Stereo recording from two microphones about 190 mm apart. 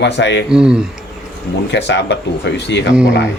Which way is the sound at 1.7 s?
65° left (ahead or behind).